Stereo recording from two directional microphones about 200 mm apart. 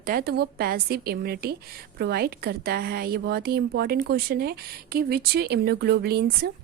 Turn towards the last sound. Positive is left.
turn(degrees=-50)  # may be behind; listen again after turning